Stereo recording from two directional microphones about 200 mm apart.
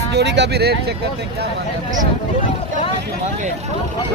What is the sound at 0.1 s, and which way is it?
Speech, 60° right (ahead or behind).